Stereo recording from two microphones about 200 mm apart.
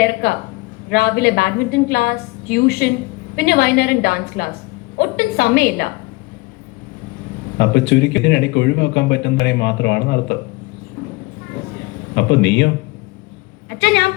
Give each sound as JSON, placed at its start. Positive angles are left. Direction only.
{"t": 0.0, "sound": "a woman's voice", "side_deg": 55}
{"t": 7.6, "sound": "speech", "side_deg": 60}
{"t": 12.1, "sound": "speech", "side_deg": 60}
{"t": 13.7, "sound": "a woman's voice", "side_deg": 60}